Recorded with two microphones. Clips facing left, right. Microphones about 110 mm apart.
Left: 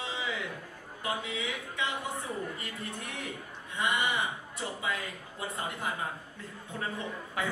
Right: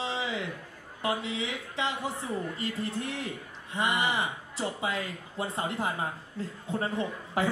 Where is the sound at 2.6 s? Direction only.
30° right (ahead or behind).